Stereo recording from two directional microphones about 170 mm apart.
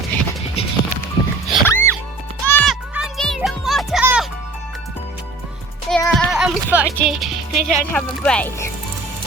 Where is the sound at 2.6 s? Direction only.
Centre (ahead or behind).